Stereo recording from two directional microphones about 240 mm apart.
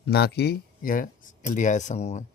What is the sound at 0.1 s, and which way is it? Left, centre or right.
Speech, left.